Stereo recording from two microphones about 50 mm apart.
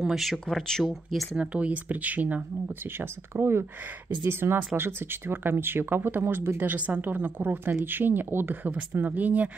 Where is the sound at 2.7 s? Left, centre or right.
Right.